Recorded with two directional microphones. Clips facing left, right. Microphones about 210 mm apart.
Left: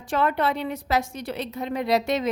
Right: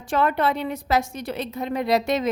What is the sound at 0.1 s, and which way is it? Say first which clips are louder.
A woman's voice: right 2 dB; 50° right (ahead or behind).